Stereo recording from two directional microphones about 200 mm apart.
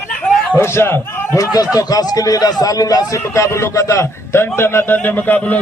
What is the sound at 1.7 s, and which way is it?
A man's voice, 20° left (ahead or behind).